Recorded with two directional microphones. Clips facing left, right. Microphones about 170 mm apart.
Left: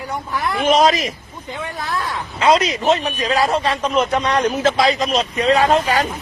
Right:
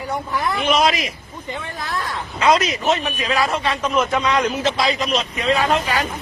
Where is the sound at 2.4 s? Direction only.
30° left (ahead or behind).